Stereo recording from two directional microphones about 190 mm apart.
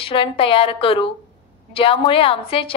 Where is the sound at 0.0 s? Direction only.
30° left (ahead or behind).